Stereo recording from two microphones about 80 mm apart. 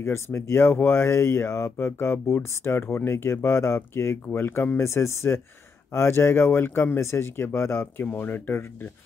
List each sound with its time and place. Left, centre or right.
0.0 s speech: left